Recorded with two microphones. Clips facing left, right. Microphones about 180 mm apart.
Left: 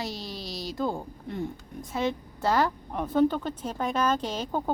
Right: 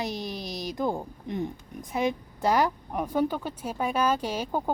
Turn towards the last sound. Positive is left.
turn(degrees=-10)  # may be behind; listen again after turning